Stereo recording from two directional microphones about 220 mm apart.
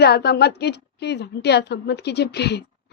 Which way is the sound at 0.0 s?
45° left (ahead or behind).